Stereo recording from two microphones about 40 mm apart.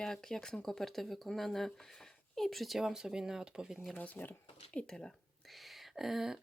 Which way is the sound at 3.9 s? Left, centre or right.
Left.